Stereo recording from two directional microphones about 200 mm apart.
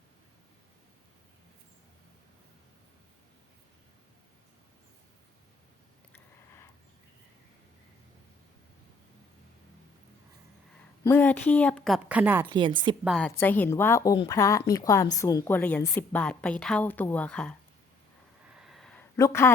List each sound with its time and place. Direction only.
6.1 s a sound: 10° left (ahead or behind)
11.0 s a woman's voice: 10° left (ahead or behind)
12.0 s a woman's voice: 5° right (ahead or behind)
12.5 s a woman's voice: 25° right (ahead or behind)
13.1 s a woman's voice: centre (ahead or behind)
18.4 s a sound: 5° right (ahead or behind)
19.1 s a woman's voice: 15° left (ahead or behind)